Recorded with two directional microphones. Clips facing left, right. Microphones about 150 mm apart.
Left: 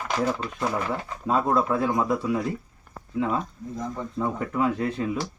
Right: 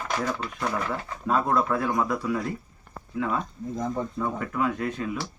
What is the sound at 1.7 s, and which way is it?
Speech, 20° left (ahead or behind).